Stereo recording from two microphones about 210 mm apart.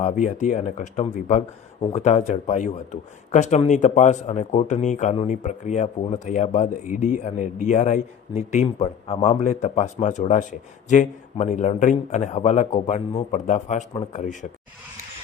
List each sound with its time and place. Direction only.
0.0 s a man's voice: 35° left (ahead or behind)